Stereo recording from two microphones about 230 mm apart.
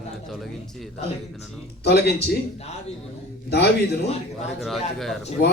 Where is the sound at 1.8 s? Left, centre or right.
Left.